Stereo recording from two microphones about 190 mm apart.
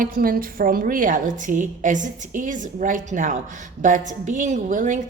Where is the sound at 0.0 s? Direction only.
50° right (ahead or behind).